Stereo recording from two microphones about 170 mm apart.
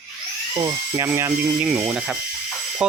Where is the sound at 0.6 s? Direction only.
20° right (ahead or behind); by 3.0 s 5° right (ahead or behind).